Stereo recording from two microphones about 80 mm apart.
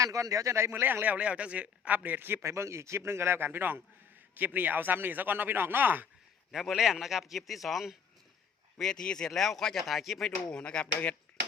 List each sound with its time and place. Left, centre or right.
0.0 s speech: right
6.5 s a man's voice: centre